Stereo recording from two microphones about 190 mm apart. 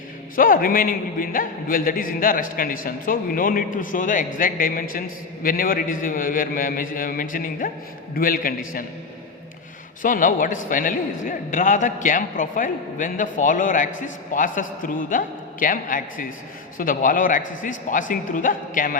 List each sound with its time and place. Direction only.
0.3 s a man's voice: 45° left (ahead or behind)
10.0 s a man's voice: 45° left (ahead or behind)